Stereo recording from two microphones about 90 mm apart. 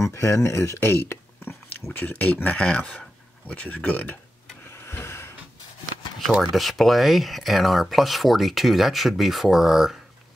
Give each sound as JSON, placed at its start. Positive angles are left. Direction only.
{"t": 0.0, "sound": "speech", "side_deg": 30}
{"t": 4.6, "sound": "a sound", "side_deg": 30}
{"t": 6.5, "sound": "speech", "side_deg": 0}